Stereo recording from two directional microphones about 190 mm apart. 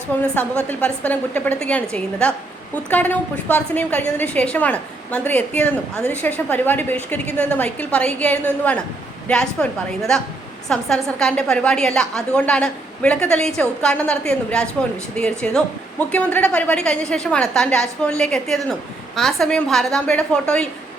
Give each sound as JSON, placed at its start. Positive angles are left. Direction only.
{"t": 0.3, "sound": "a woman's voice", "side_deg": 10}